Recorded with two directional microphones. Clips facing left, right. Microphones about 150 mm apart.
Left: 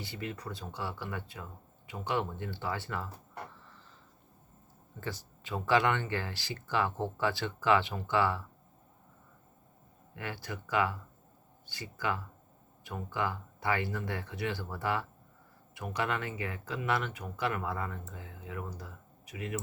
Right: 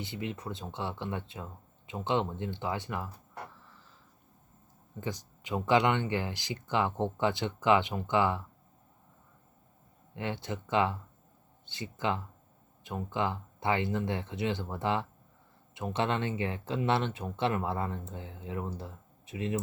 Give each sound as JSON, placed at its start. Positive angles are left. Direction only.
{"t": 0.0, "sound": "speech", "side_deg": -20}
{"t": 4.9, "sound": "speech", "side_deg": -15}
{"t": 10.2, "sound": "speech", "side_deg": -20}